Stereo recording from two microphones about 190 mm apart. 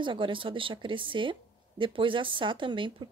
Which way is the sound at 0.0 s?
25° right (ahead or behind).